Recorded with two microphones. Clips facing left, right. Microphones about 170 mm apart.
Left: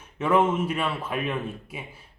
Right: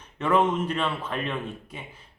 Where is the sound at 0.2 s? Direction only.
10° left (ahead or behind).